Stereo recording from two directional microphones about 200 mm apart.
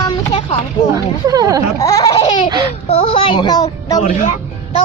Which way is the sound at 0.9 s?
15° right (ahead or behind).